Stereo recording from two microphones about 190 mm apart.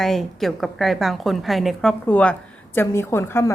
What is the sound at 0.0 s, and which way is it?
A woman's voice, centre (ahead or behind).